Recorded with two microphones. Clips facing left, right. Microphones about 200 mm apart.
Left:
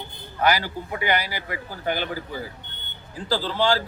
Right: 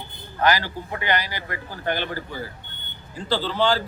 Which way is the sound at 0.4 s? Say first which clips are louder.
Right 1 dB; 10° left (ahead or behind).